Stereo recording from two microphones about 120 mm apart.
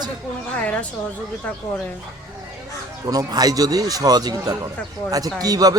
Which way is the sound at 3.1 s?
30° right (ahead or behind).